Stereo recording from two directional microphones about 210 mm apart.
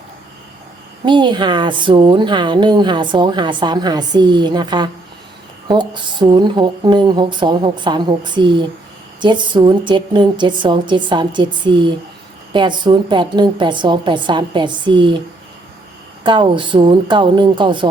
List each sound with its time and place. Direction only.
1.0 s speech: 20° right (ahead or behind)
16.2 s speech: 20° right (ahead or behind)